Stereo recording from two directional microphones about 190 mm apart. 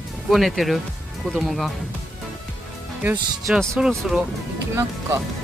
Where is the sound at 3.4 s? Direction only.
Centre (ahead or behind).